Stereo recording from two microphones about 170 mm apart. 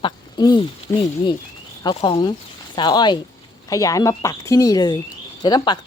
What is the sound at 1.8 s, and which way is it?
Speech, 30° left (ahead or behind).